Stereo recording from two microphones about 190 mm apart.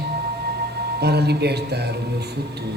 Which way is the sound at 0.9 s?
60° right (ahead or behind).